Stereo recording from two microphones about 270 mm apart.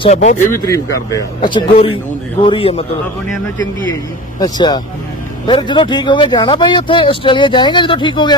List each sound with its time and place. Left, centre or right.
0.0 s a man's voice: left
0.5 s a man's voice: centre
3.9 s speech: centre